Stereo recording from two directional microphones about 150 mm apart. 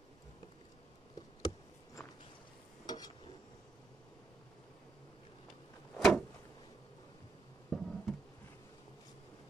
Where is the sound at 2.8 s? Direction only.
25° left (ahead or behind).